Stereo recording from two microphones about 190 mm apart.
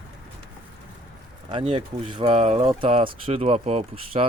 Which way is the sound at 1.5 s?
30° right (ahead or behind).